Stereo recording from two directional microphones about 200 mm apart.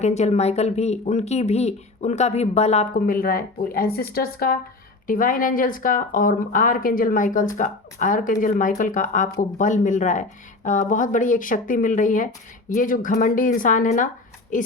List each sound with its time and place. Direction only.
0.0 s speech: 35° left (ahead or behind)
2.9 s speech: 45° left (ahead or behind)